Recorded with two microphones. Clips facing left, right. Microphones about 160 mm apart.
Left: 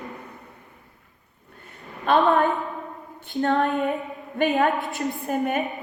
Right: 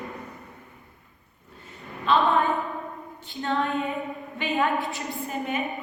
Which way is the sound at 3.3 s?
40° left (ahead or behind).